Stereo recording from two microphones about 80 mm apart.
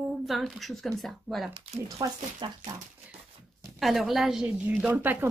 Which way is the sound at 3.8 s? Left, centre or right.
Centre.